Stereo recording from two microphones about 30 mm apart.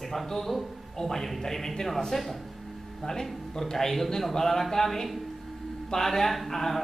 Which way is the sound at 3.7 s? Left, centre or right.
Centre.